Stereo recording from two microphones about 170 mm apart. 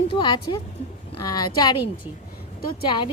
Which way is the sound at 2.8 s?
25° left (ahead or behind).